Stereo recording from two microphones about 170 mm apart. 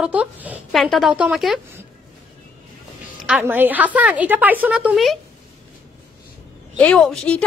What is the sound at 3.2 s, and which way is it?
A woman's voice, 10° right (ahead or behind).